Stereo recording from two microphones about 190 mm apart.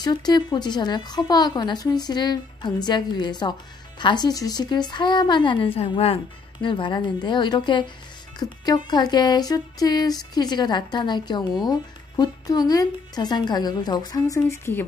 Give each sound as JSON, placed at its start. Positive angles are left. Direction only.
{"t": 0.0, "sound": "a woman's voice", "side_deg": 20}